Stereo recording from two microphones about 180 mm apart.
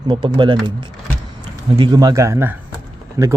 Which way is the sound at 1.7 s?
25° right (ahead or behind).